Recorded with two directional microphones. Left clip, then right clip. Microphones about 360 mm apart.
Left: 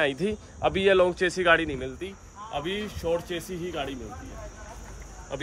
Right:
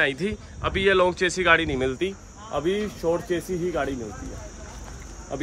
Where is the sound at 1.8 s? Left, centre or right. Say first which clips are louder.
Right 10 dB; centre.